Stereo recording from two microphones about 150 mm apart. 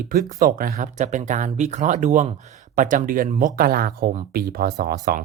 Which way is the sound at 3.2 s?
45° right (ahead or behind).